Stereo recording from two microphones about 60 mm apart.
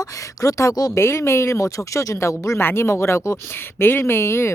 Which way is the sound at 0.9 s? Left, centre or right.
Left.